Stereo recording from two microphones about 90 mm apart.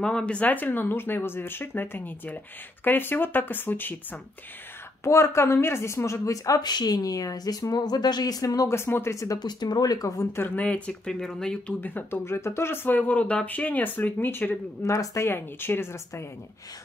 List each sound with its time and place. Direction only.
0.0 s speech: 10° left (ahead or behind)
5.0 s a woman's voice: 35° left (ahead or behind)
8.7 s speech: 25° left (ahead or behind)
9.4 s speech: 50° left (ahead or behind); by 10.5 s 30° left (ahead or behind)
10.5 s speech: 15° left (ahead or behind)
11.8 s speech: 20° left (ahead or behind)
14.9 s speech: 35° left (ahead or behind)